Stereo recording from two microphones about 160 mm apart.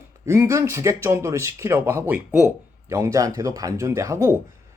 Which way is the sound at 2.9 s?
20° right (ahead or behind).